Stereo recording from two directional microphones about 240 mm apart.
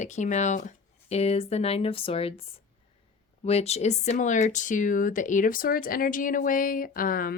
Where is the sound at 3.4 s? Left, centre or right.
Left.